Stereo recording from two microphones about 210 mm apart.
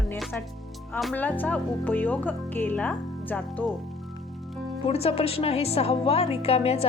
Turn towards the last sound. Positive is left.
turn(degrees=30)  # may be behind; listen again after turning